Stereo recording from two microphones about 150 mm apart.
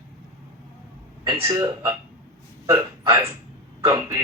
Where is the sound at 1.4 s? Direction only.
25° right (ahead or behind).